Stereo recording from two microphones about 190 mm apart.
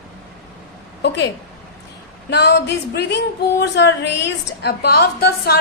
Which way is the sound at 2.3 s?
60° left (ahead or behind).